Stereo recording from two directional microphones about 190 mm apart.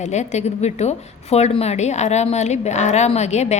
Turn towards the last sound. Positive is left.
turn(degrees=35)  # may be behind; listen again after turning